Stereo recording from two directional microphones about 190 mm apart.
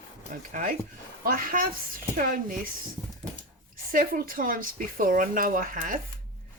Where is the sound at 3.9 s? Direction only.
45° right (ahead or behind).